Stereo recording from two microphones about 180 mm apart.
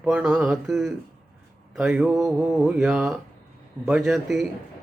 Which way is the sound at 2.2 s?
20° right (ahead or behind).